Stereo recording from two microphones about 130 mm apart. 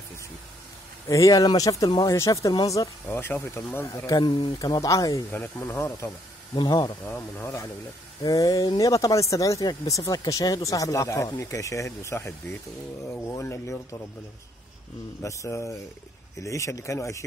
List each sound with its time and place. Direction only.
1.0 s speech: 25° left (ahead or behind)
4.2 s speech: 35° left (ahead or behind); by 6.0 s 20° left (ahead or behind)
6.5 s speech: 35° left (ahead or behind)
7.1 s speech: 20° left (ahead or behind)
15.2 s speech: 25° left (ahead or behind)